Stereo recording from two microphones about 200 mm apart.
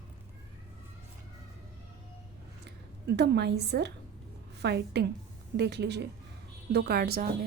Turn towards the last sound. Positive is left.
turn(degrees=-50)  # may be behind; listen again after turning